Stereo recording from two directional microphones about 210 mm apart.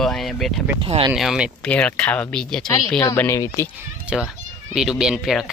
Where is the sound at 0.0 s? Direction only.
Centre (ahead or behind).